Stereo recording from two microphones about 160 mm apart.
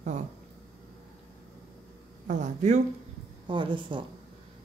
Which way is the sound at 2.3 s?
50° right (ahead or behind).